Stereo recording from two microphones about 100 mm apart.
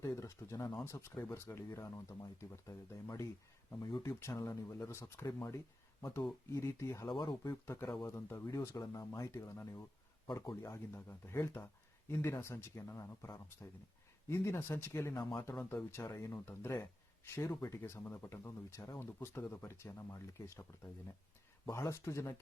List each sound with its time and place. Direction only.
0.0 s speech: 30° left (ahead or behind)
7.1 s speech: 45° left (ahead or behind)
7.5 s speech: 25° left (ahead or behind)
21.7 s speech: 30° left (ahead or behind)